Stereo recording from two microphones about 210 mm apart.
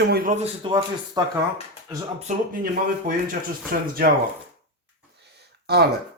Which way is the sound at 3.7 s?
45° right (ahead or behind).